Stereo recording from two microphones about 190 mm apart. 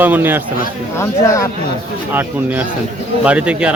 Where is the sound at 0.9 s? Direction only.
15° left (ahead or behind).